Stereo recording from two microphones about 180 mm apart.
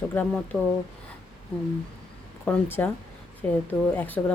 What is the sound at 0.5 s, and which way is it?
Speech, 5° right (ahead or behind).